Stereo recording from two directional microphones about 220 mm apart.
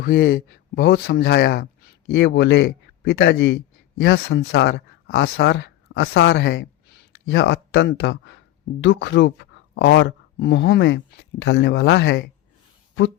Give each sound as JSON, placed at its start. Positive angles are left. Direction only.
{"t": 0.0, "sound": "a man's voice", "side_deg": 40}